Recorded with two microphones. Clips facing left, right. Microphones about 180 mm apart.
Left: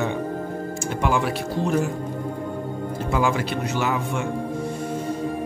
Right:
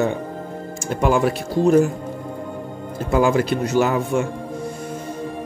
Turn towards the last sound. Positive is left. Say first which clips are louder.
# right 6 dB
turn(degrees=-40)  # may be behind; listen again after turning